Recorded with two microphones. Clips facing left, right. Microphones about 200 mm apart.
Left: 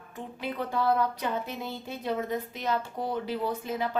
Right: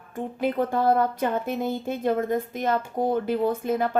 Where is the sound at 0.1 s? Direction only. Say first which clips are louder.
Right 9 dB; 50° right (ahead or behind).